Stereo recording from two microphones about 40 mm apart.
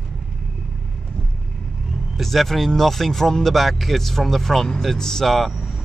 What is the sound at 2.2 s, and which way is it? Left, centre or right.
Speech, centre.